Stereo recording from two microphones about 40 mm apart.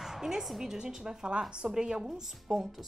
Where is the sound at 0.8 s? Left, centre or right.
Centre.